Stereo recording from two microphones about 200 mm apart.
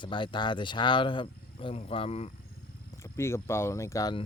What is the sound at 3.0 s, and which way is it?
Speech, 15° left (ahead or behind).